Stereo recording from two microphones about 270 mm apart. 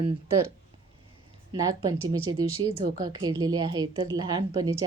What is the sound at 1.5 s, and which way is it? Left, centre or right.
A woman's voice, centre.